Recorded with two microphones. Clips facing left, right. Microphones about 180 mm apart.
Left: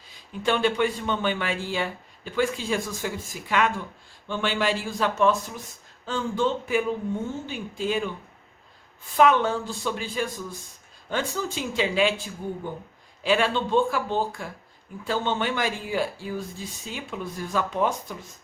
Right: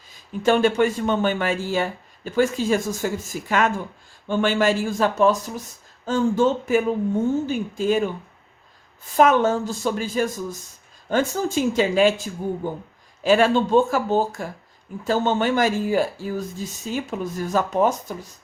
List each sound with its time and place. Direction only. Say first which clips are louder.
0.4 s a man's voice: right 5 dB; 45° right (ahead or behind)
9.1 s a man's voice: right 3 dB; 45° right (ahead or behind)